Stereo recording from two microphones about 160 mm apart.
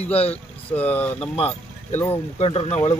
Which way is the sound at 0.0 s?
40° left (ahead or behind).